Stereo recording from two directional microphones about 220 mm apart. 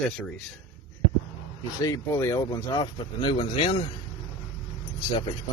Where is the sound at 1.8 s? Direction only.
15° left (ahead or behind).